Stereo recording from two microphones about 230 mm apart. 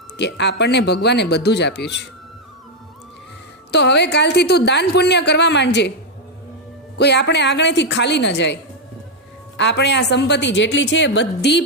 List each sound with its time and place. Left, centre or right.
0.2 s a woman's voice: left
3.7 s a woman's voice: left
6.9 s a woman's voice: left
9.6 s a woman's voice: left